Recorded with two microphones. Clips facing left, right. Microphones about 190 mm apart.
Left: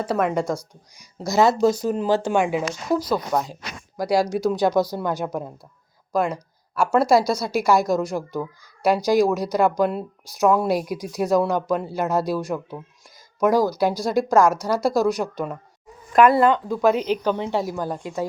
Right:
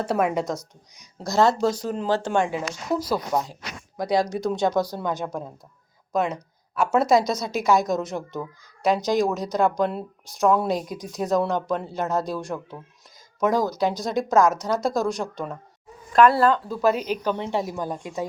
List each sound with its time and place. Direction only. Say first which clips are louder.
0.0 s speech: left 1 dB; 5° right (ahead or behind)
1.3 s speech: left 3 dB; 10° left (ahead or behind)
3.3 s speech: left 1 dB; 10° right (ahead or behind)
3.9 s speech: left 2 dB; 5° left (ahead or behind)
16.4 s speech: left 2 dB; 15° left (ahead or behind)
17.3 s speech: left 2 dB; 5° left (ahead or behind)